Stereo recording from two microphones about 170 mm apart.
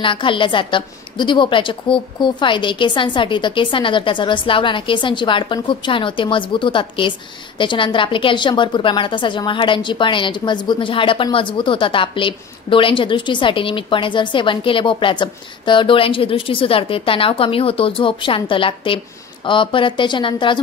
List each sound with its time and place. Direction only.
0.0 s a woman's voice: 30° left (ahead or behind)